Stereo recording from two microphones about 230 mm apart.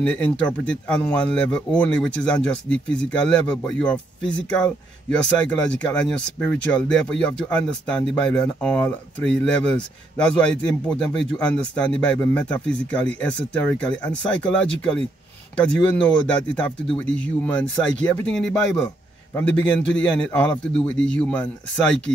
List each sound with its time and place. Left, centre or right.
0.0 s speech: centre